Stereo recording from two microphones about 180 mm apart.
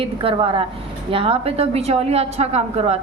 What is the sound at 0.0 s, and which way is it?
A woman's voice, 30° right (ahead or behind).